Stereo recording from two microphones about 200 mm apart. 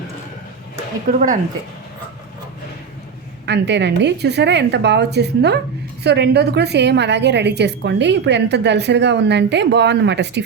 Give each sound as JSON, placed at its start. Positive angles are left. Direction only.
{"t": 1.1, "sound": "speech", "side_deg": -45}
{"t": 3.4, "sound": "a woman's voice", "side_deg": -60}